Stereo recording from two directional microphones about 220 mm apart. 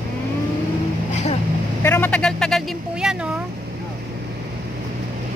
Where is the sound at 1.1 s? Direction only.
30° left (ahead or behind).